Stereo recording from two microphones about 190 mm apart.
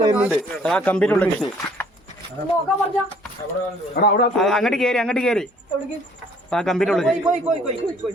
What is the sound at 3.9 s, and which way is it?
Speech, 55° left (ahead or behind).